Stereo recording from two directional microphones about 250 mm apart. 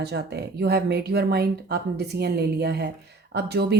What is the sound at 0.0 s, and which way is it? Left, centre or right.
A woman's voice, right.